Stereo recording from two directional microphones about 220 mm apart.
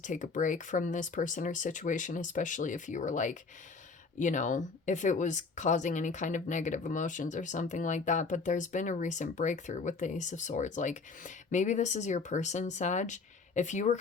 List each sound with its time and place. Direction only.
0.0 s speech: 35° left (ahead or behind)